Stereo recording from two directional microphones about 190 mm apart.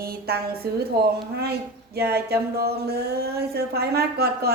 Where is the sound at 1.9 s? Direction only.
55° right (ahead or behind).